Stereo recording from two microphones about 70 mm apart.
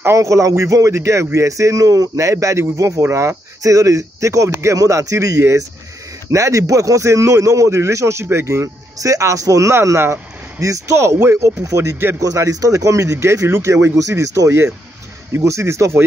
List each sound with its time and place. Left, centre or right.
0.0 s a man's voice: right
9.8 s a man's voice: right
12.2 s a man's voice: right